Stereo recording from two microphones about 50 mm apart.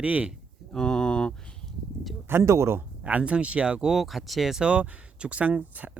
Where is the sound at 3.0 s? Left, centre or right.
Right.